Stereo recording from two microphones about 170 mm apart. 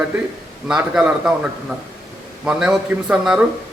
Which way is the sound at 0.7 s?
5° right (ahead or behind).